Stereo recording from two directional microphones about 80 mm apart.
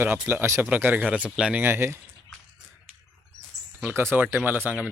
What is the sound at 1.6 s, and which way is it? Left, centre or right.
Speech, right.